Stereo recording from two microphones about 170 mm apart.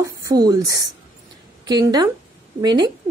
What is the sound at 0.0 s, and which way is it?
A woman's voice, 20° right (ahead or behind).